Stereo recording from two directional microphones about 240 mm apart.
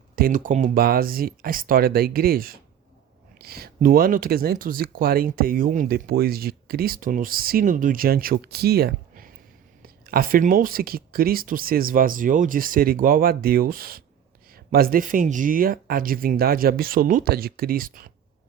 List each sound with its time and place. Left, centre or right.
0.2 s speech: right